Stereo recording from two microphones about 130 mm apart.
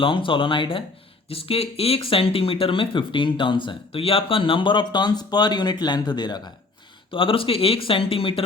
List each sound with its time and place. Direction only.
0.0 s speech: 40° left (ahead or behind)
7.1 s speech: 45° left (ahead or behind)